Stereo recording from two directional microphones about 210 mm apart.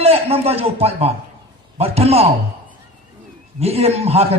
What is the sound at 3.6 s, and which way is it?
Speech, 30° right (ahead or behind).